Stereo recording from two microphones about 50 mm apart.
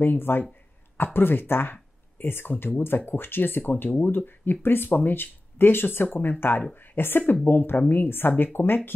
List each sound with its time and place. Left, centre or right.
0.0 s speech: left